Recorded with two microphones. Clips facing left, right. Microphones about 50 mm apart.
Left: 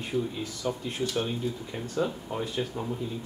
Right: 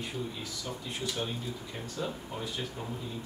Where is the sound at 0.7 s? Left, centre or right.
Centre.